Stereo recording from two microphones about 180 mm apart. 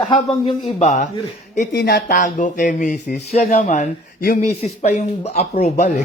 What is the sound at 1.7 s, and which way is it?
Speech, 60° left (ahead or behind).